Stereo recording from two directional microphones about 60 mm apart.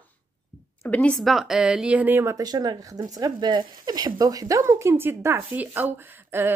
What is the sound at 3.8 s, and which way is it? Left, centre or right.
Speech, right.